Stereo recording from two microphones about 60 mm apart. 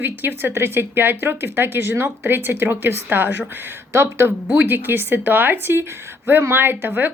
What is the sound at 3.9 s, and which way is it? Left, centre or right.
Speech, right.